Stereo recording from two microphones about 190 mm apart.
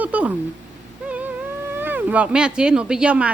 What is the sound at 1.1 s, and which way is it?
Speech, 10° right (ahead or behind).